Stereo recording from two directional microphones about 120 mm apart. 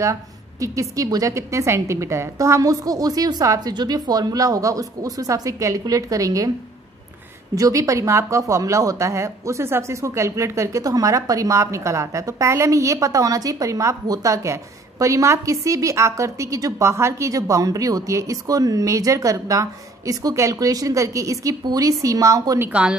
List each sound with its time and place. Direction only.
0.0 s speech: 25° right (ahead or behind)
7.5 s speech: 30° right (ahead or behind)
22.7 s a woman's voice: 10° right (ahead or behind)